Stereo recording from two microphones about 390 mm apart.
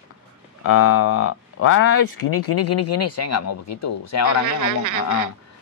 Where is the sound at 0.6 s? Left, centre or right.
Left.